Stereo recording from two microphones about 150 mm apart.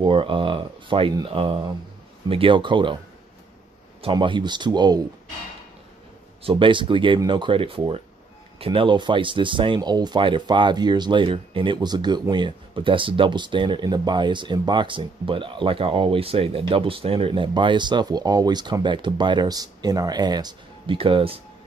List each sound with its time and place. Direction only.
0.0 s speech: 35° right (ahead or behind)
4.0 s speech: 35° right (ahead or behind)
6.4 s speech: 35° right (ahead or behind)